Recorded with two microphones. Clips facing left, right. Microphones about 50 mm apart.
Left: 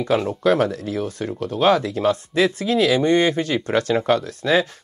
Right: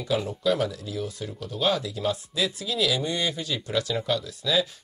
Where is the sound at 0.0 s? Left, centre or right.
Left.